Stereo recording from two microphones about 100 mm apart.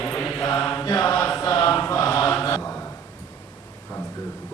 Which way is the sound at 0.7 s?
20° left (ahead or behind).